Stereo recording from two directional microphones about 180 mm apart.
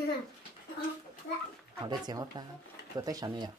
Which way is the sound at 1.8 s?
25° right (ahead or behind).